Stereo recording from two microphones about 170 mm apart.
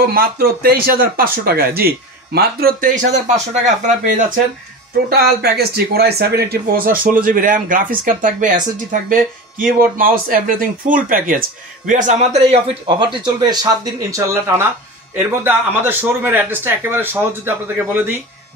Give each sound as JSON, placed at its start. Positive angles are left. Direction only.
{"t": 0.0, "sound": "speech", "side_deg": -60}
{"t": 3.1, "sound": "speech", "side_deg": -45}
{"t": 5.1, "sound": "speech", "side_deg": -70}
{"t": 12.8, "sound": "a man's voice", "side_deg": -25}